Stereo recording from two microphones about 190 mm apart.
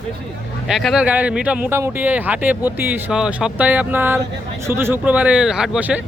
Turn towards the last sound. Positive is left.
turn(degrees=-10)  # may be behind; listen again after turning